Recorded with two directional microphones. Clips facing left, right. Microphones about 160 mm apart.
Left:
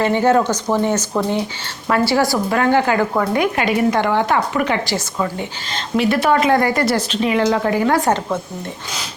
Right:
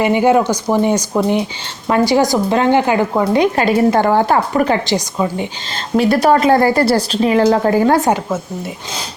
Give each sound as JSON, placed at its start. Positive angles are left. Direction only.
{"t": 0.0, "sound": "speech", "side_deg": -15}
{"t": 3.5, "sound": "a woman's voice", "side_deg": -35}
{"t": 4.9, "sound": "speech", "side_deg": -20}
{"t": 5.7, "sound": "a woman's voice", "side_deg": -40}